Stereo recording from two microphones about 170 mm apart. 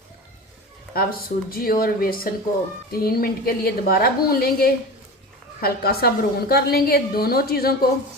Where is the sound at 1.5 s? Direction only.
60° left (ahead or behind).